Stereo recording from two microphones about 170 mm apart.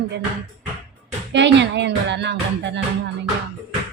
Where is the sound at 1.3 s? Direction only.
90° right.